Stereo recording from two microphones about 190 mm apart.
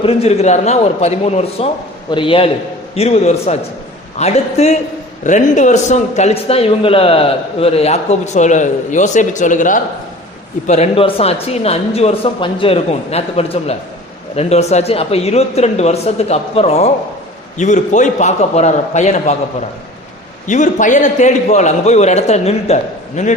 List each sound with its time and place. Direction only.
0.0 s a man's voice: 30° left (ahead or behind)
10.7 s a man's voice: 30° left (ahead or behind)
20.5 s a man's voice: 40° left (ahead or behind)